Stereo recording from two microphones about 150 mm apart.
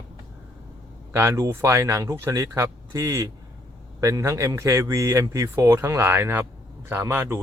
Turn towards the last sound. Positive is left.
turn(degrees=-15)  # may be behind; listen again after turning